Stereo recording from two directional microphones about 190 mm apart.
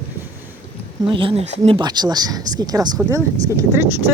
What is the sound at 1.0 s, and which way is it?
Speech, 25° right (ahead or behind).